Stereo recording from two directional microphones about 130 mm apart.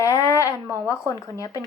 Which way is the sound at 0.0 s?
25° left (ahead or behind).